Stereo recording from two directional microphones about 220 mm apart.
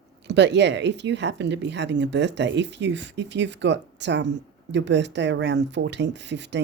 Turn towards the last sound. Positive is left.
turn(degrees=-50)  # may be behind; listen again after turning